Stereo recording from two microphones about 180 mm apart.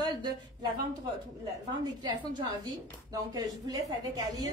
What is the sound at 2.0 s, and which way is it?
Speech, 25° right (ahead or behind).